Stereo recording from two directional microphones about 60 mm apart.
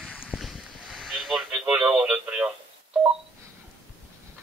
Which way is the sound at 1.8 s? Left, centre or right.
Centre.